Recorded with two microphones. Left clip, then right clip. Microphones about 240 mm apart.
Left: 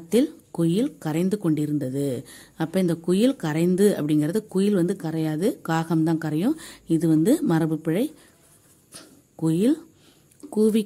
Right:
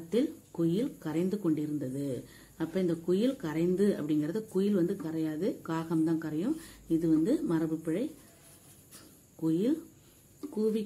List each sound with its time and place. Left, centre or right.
0.1 s speech: left
9.4 s speech: left